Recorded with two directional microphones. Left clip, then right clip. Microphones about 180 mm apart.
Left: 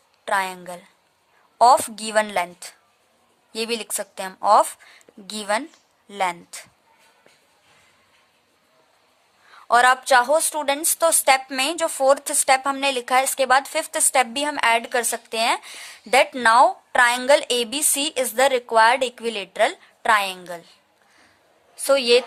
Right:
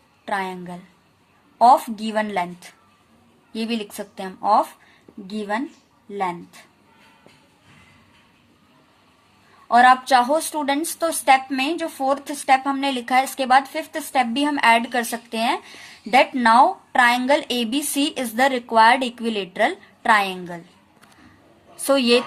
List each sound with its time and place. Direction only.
0.3 s a woman's voice: 45° left (ahead or behind)
9.6 s a woman's voice: 55° left (ahead or behind); by 20.7 s 35° left (ahead or behind)
21.8 s a woman's voice: 30° left (ahead or behind)